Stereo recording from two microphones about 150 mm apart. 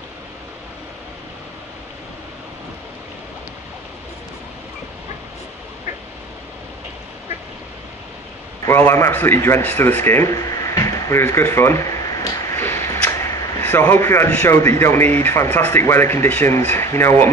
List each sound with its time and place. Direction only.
8.6 s speech: 20° left (ahead or behind)